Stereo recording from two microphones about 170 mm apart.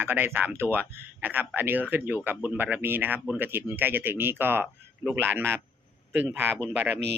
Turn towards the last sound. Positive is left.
turn(degrees=-10)  # may be behind; listen again after turning